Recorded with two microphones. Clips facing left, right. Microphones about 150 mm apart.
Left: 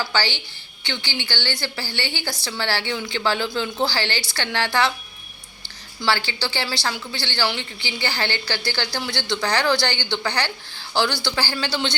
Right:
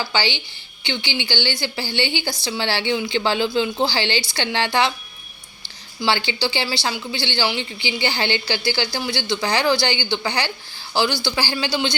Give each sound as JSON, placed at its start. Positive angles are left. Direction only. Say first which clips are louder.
{"t": 0.1, "sound": "a woman's voice", "louder": "right 1 dB", "side_deg": -15}
{"t": 6.1, "sound": "a woman's voice", "louder": "right 2 dB", "side_deg": -20}